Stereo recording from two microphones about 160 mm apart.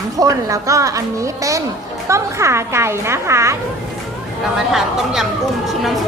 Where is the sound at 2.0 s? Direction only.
20° right (ahead or behind).